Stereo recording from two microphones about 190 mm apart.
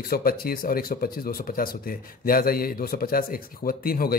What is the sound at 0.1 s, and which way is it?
Speech, 50° left (ahead or behind).